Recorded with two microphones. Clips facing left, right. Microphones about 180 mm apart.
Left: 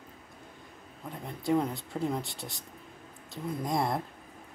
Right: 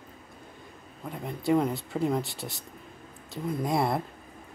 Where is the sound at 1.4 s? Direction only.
5° right (ahead or behind).